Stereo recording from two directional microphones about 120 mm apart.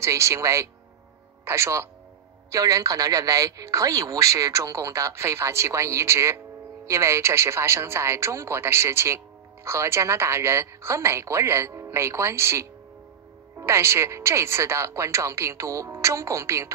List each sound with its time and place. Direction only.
0.0 s speech: 25° right (ahead or behind)